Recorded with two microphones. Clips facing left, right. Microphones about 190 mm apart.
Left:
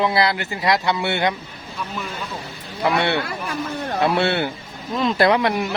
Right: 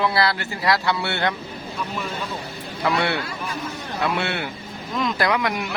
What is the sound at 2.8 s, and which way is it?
Speech, 20° left (ahead or behind).